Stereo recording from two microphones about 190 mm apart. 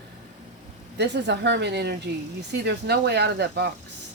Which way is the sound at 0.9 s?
65° right (ahead or behind).